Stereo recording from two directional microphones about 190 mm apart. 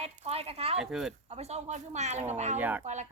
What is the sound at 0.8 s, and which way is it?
Speech, centre (ahead or behind).